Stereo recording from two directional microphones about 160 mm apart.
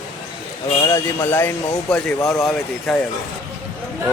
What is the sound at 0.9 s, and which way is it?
Speech, 15° left (ahead or behind).